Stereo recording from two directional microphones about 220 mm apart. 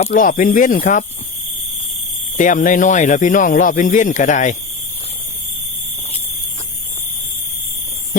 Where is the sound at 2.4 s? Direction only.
35° left (ahead or behind).